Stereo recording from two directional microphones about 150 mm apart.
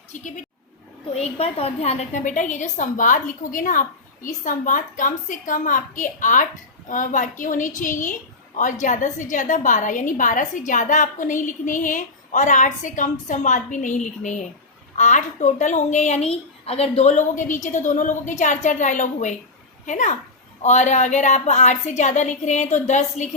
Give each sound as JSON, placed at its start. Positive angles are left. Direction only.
{"t": 0.1, "sound": "a woman's voice", "side_deg": 55}
{"t": 1.1, "sound": "a woman's voice", "side_deg": 40}